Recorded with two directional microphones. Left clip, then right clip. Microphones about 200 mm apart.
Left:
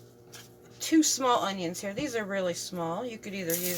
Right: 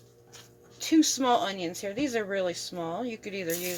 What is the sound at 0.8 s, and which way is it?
Speech, 25° right (ahead or behind).